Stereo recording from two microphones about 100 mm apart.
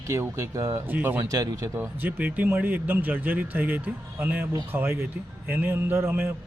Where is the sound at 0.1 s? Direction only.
35° right (ahead or behind).